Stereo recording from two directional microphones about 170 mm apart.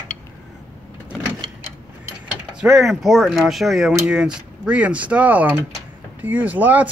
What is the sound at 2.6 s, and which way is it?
Speech, 5° right (ahead or behind).